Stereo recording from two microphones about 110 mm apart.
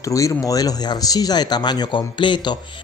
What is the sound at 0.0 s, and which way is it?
Speech, 30° left (ahead or behind).